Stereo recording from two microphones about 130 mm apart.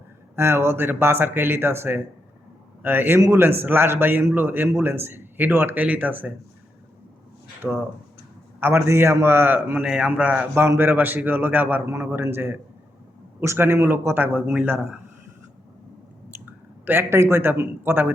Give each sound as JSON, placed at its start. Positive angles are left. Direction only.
{"t": 0.3, "sound": "a man's voice", "side_deg": -20}
{"t": 3.2, "sound": "a man's voice", "side_deg": -30}
{"t": 3.4, "sound": "a man's voice", "side_deg": -15}
{"t": 7.6, "sound": "speech", "side_deg": 0}
{"t": 8.6, "sound": "a man's voice", "side_deg": -20}
{"t": 16.3, "sound": "speech", "side_deg": -15}